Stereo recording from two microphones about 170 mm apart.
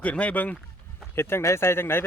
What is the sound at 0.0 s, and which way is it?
Speech, 10° left (ahead or behind).